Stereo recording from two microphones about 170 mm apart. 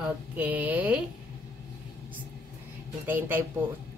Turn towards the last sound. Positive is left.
turn(degrees=-10)  # may be behind; listen again after turning